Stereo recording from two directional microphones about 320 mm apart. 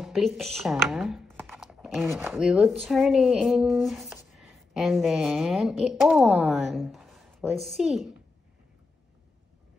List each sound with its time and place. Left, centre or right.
0.0 s speech: centre